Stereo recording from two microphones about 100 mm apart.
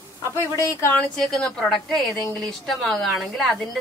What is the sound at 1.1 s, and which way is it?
A woman's voice, 5° left (ahead or behind).